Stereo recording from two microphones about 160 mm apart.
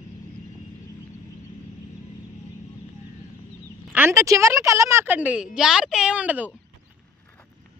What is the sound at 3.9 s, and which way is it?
A woman's voice, 15° right (ahead or behind).